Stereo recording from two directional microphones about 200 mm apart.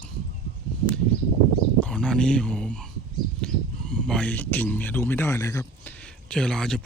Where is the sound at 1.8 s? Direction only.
5° left (ahead or behind).